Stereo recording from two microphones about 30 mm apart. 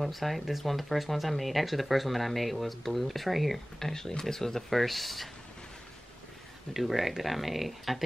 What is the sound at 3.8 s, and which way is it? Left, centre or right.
Speech, centre.